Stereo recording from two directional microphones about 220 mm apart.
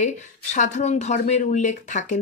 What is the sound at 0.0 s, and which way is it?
Speech, 35° left (ahead or behind).